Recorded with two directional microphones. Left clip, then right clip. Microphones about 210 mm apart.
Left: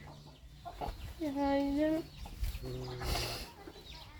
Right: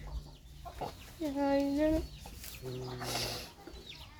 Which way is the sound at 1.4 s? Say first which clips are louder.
Right 2 dB; centre (ahead or behind).